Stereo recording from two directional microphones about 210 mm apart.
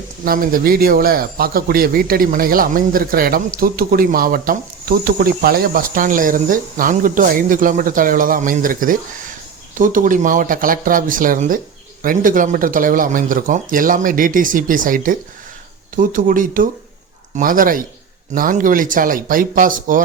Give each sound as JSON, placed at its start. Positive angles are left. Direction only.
{"t": 0.3, "sound": "a man's voice", "side_deg": -45}